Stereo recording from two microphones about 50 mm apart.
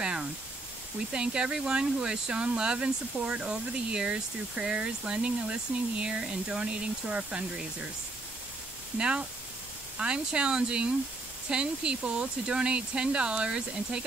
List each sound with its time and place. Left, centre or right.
0.0 s a sound: centre
1.1 s speech: centre
8.9 s speech: centre